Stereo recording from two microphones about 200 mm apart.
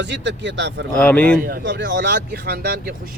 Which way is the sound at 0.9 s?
5° left (ahead or behind).